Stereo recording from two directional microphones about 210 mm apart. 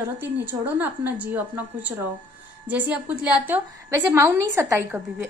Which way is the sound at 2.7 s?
5° right (ahead or behind).